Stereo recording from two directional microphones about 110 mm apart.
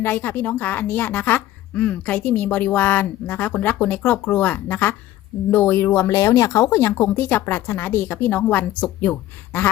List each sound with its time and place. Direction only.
0.0 s a woman's voice: 20° left (ahead or behind)